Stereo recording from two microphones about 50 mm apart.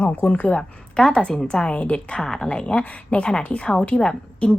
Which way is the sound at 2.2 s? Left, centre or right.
Centre.